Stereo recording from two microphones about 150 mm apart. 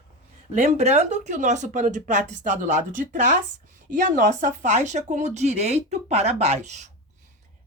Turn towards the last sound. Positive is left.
turn(degrees=-50)  # may be behind; listen again after turning